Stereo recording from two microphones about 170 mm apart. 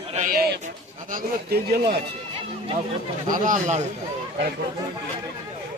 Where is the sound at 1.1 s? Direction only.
60° right (ahead or behind).